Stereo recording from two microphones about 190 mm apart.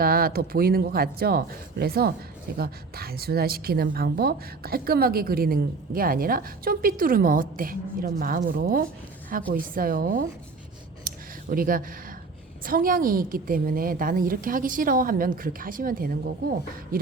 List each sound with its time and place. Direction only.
0.0 s a woman's voice: 50° right (ahead or behind)
11.0 s a sound: 45° right (ahead or behind)
12.6 s a woman's voice: 50° right (ahead or behind)